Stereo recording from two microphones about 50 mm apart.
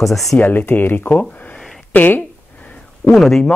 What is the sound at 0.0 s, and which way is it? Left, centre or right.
Speech, centre.